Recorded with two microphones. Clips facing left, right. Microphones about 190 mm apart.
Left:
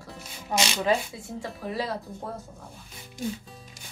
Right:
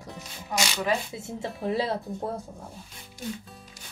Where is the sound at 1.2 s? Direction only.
25° right (ahead or behind).